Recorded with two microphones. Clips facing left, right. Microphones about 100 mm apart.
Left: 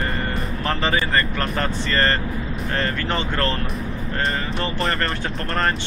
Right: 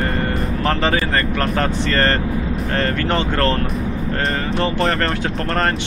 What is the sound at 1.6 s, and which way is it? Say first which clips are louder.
Speech: right 2 dB; 65° right (ahead or behind).